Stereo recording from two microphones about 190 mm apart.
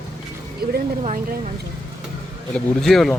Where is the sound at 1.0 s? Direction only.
45° right (ahead or behind).